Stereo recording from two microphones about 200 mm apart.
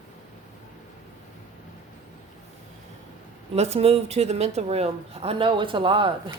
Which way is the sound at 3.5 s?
30° right (ahead or behind).